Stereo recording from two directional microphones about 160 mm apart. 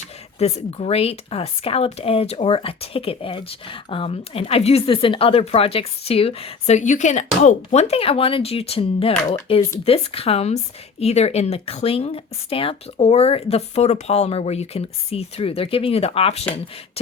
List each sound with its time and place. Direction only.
0.3 s speech: 40° left (ahead or behind)